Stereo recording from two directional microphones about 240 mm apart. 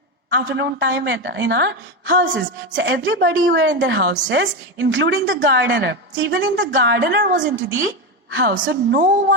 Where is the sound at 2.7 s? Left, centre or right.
Right.